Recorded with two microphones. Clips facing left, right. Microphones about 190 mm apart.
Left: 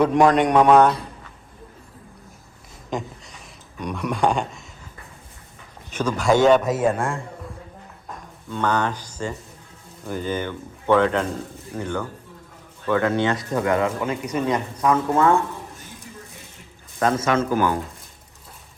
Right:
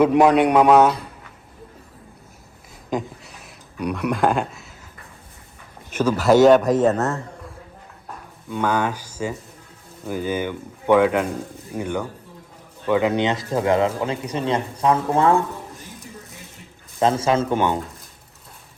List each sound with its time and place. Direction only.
0.0 s speech: 5° right (ahead or behind)
2.9 s a sound: 5° right (ahead or behind)
5.9 s a man's voice: 10° right (ahead or behind); by 7.3 s 10° left (ahead or behind)
8.4 s speech: 10° right (ahead or behind); by 15.4 s 30° right (ahead or behind)
17.0 s speech: 30° right (ahead or behind)